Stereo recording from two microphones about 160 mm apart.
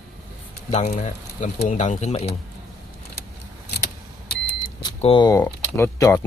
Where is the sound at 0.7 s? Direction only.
45° left (ahead or behind).